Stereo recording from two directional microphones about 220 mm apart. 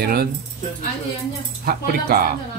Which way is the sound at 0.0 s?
45° right (ahead or behind).